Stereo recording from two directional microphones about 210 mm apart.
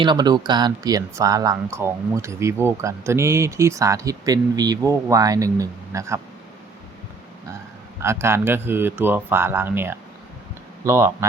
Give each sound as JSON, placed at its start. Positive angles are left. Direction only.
{"t": 0.0, "sound": "speech", "side_deg": -20}
{"t": 8.0, "sound": "speech", "side_deg": -10}